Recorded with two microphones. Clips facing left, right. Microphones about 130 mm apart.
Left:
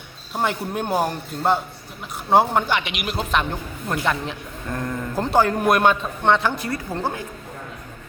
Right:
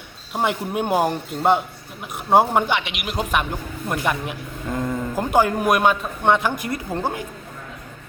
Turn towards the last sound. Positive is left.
turn(degrees=-15)  # may be behind; listen again after turning